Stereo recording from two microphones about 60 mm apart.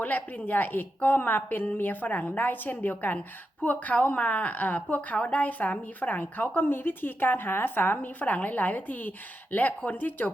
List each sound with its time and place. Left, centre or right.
0.0 s a woman's voice: left